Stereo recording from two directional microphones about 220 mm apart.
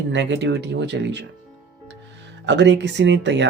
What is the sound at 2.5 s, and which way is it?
Speech, 55° right (ahead or behind).